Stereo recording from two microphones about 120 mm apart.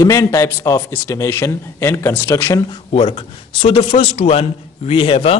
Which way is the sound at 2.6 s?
45° left (ahead or behind).